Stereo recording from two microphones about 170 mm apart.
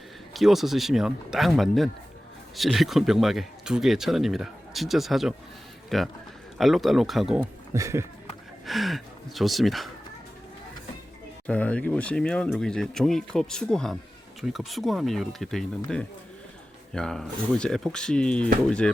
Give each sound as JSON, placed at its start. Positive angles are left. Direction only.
{"t": 0.3, "sound": "speech", "side_deg": 0}
{"t": 7.7, "sound": "speech", "side_deg": -15}
{"t": 8.6, "sound": "speech", "side_deg": 0}
{"t": 11.4, "sound": "speech", "side_deg": 5}